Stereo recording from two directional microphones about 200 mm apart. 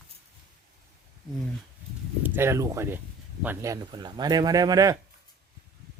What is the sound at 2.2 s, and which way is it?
Speech, 10° right (ahead or behind).